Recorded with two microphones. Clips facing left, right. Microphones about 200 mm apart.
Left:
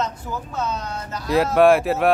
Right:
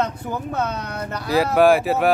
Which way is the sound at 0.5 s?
60° right (ahead or behind).